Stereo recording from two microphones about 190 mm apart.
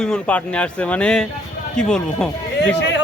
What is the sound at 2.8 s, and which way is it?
Speech, 65° left (ahead or behind).